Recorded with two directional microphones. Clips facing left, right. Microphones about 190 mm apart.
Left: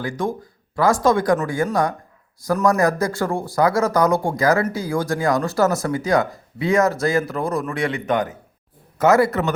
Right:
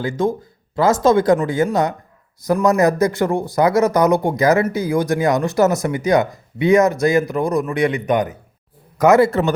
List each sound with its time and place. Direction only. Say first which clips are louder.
0.0 s speech: right 5 dB; 25° right (ahead or behind)